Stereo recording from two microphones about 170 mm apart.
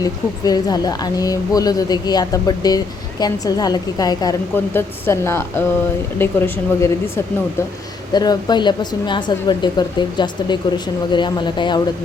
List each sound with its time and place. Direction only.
0.0 s speech: 20° left (ahead or behind)
8.1 s speech: 25° left (ahead or behind)